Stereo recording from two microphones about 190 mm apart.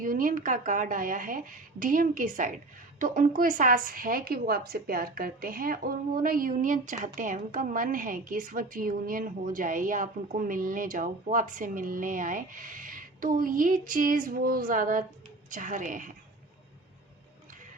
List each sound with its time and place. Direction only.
0.0 s a woman's voice: 45° right (ahead or behind)